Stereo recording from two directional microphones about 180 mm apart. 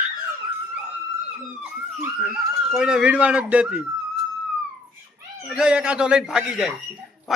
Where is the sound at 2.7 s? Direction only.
5° right (ahead or behind).